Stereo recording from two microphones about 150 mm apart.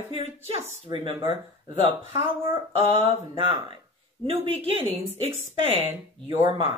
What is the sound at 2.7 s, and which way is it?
Speech, 35° right (ahead or behind).